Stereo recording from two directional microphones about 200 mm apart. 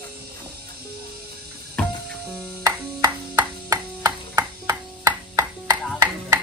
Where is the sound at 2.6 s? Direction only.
15° right (ahead or behind).